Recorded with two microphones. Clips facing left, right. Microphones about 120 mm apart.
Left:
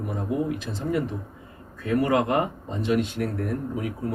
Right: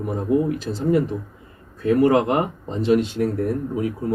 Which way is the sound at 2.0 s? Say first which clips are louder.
Right 4 dB; 30° right (ahead or behind).